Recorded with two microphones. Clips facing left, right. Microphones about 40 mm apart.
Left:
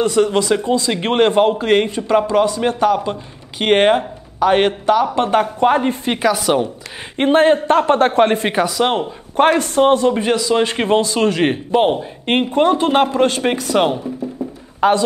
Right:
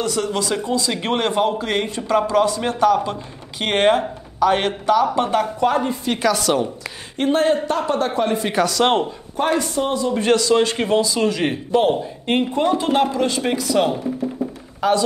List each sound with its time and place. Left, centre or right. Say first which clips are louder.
0.0 s a man's voice: left 7 dB; left
6.1 s a woman's voice: left 2 dB; centre
7.2 s a man's voice: left 5 dB; left
8.5 s a woman's voice: left 1 dB; centre
8.8 s speech: even; centre
9.4 s speech: left 7 dB; left
10.2 s a man's voice: even; centre; by 11.6 s left
11.7 s speech: even; left
12.3 s speech: left 4 dB; left